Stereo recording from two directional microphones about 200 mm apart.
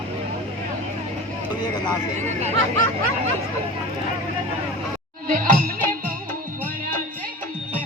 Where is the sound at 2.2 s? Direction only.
35° right (ahead or behind).